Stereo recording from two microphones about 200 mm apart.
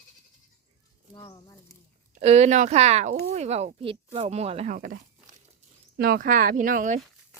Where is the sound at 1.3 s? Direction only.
20° left (ahead or behind).